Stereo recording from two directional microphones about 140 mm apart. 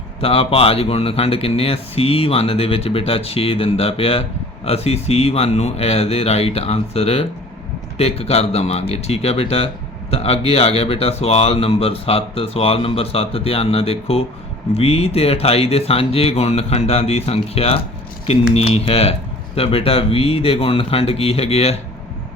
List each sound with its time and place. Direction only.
0.2 s speech: 45° left (ahead or behind)